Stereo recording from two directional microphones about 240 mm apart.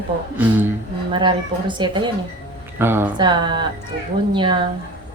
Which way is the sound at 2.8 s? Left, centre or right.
Centre.